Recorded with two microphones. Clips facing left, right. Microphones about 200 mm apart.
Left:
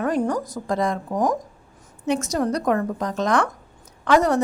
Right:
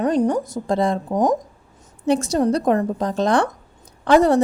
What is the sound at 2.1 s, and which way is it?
A woman's voice, 30° right (ahead or behind).